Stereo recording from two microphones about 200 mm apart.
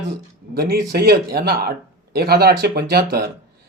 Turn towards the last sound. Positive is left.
turn(degrees=-50)  # may be behind; listen again after turning